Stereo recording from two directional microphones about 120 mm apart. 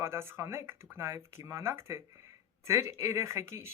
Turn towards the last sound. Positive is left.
turn(degrees=-25)  # may be behind; listen again after turning